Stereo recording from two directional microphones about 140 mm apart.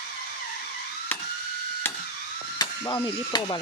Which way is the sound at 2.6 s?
30° left (ahead or behind).